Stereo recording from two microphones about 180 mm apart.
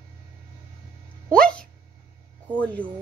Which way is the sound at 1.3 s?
5° left (ahead or behind).